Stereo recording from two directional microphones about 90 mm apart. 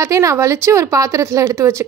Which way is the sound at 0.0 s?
35° right (ahead or behind).